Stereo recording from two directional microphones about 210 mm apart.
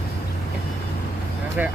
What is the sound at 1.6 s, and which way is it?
Speech, 5° right (ahead or behind).